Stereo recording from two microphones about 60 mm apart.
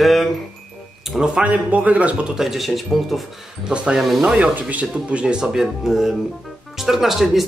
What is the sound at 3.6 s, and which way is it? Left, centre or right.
Speech, centre.